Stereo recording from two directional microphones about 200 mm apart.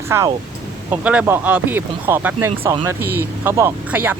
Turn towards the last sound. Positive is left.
turn(degrees=-10)  # may be behind; listen again after turning